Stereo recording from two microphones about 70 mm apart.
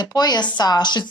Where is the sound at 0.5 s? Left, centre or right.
Left.